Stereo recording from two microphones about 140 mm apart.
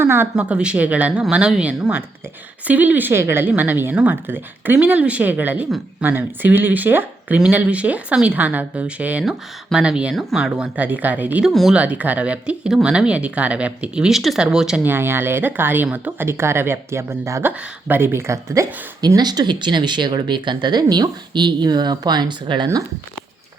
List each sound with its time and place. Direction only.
0.0 s speech: 15° right (ahead or behind)
14.9 s speech: 15° right (ahead or behind); by 22.8 s 35° right (ahead or behind)